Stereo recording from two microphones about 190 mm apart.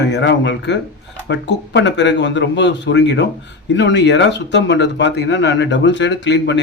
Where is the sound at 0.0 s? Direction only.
65° left (ahead or behind).